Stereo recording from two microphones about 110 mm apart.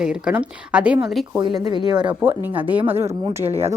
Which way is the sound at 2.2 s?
20° right (ahead or behind).